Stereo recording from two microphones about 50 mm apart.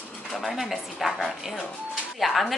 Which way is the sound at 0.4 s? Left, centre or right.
Centre.